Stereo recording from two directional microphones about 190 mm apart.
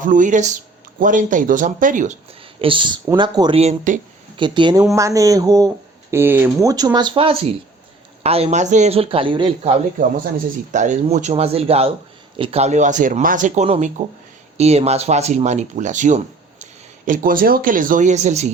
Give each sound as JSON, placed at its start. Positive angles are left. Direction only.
{"t": 0.0, "sound": "speech", "side_deg": -45}
{"t": 2.6, "sound": "speech", "side_deg": -25}
{"t": 4.4, "sound": "speech", "side_deg": -25}
{"t": 10.3, "sound": "speech", "side_deg": -40}